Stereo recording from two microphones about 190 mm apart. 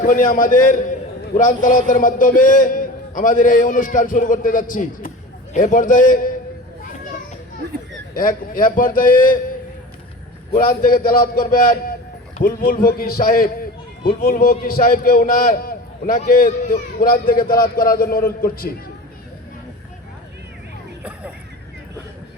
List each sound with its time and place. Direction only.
0.0 s a man's voice: 45° left (ahead or behind)
8.1 s a man's voice: 45° left (ahead or behind)
10.5 s a man's voice: 50° left (ahead or behind)